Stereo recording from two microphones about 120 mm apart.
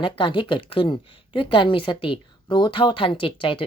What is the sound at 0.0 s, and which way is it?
Speech, 45° left (ahead or behind).